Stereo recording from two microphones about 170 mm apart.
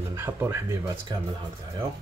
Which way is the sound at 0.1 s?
15° right (ahead or behind).